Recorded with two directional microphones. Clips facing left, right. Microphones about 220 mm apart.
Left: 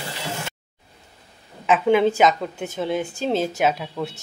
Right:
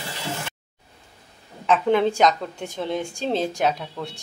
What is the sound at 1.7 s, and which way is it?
A woman's voice, 5° left (ahead or behind).